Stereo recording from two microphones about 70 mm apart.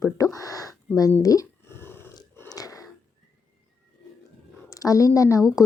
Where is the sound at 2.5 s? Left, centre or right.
Left.